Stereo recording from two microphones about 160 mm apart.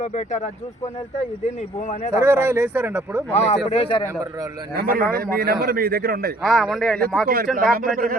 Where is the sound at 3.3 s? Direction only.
45° left (ahead or behind).